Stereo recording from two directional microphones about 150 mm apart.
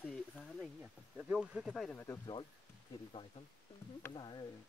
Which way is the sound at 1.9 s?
15° left (ahead or behind).